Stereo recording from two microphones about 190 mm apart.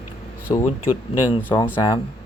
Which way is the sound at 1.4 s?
10° left (ahead or behind).